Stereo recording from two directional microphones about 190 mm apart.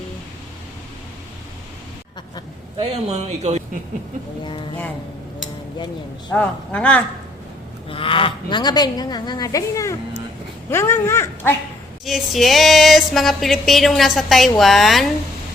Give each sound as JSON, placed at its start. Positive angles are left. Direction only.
{"t": 2.7, "sound": "speech", "side_deg": -35}
{"t": 6.3, "sound": "speech", "side_deg": 5}
{"t": 7.9, "sound": "speech", "side_deg": 30}
{"t": 12.0, "sound": "a sound", "side_deg": 0}